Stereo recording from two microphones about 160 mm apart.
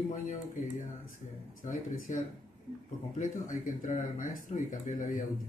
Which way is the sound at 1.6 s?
55° left (ahead or behind).